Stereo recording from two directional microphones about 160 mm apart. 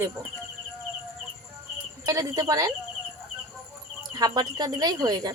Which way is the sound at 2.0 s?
25° right (ahead or behind).